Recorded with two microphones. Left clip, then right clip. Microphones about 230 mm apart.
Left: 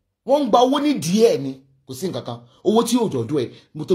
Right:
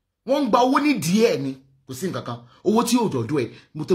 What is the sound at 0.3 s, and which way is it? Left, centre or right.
Speech, right.